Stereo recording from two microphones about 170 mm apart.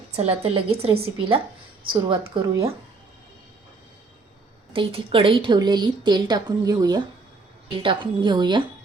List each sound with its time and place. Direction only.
0.2 s a woman's voice: 35° right (ahead or behind)
4.7 s a woman's voice: 30° right (ahead or behind)